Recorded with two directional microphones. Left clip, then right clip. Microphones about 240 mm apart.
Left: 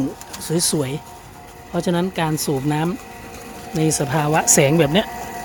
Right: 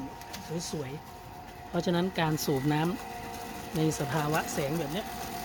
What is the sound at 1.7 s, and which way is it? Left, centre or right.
Speech, centre.